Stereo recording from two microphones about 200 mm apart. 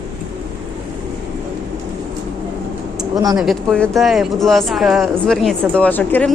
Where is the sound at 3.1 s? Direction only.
20° right (ahead or behind).